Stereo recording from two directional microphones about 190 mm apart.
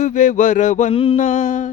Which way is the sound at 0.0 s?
40° left (ahead or behind).